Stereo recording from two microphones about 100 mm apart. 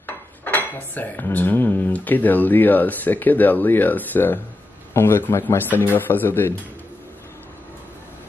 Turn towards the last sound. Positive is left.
turn(degrees=20)  # may be behind; listen again after turning